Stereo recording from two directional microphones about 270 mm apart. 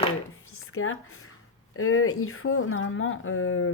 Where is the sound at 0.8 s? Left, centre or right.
Left.